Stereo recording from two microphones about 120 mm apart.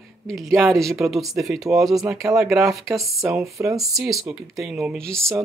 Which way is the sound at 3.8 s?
Centre (ahead or behind).